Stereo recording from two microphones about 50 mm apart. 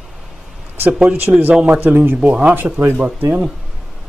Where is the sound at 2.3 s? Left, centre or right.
Right.